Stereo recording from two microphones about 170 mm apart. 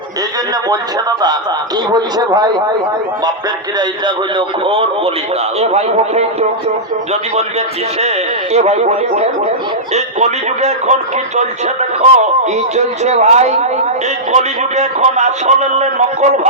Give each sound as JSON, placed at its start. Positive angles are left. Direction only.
{"t": 0.5, "sound": "speech", "side_deg": -25}
{"t": 3.8, "sound": "speech", "side_deg": -30}
{"t": 7.9, "sound": "speech", "side_deg": -40}